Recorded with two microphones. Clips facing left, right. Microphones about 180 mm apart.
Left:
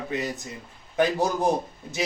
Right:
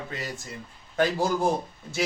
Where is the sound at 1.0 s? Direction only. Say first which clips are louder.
Left 1 dB; 20° left (ahead or behind).